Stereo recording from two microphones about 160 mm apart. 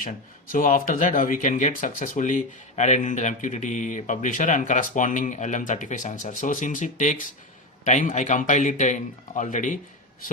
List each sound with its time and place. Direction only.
0.0 s speech: 60° left (ahead or behind)